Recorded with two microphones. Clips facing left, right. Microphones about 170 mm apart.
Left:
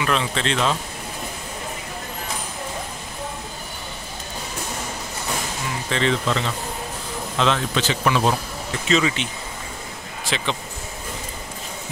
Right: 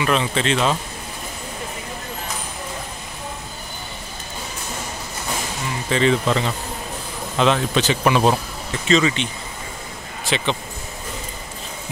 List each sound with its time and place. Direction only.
0.0 s speech: 5° right (ahead or behind)
5.9 s speech: 5° right (ahead or behind)
8.8 s speech: 5° left (ahead or behind)